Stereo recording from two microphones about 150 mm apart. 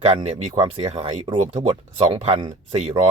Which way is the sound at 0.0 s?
45° right (ahead or behind).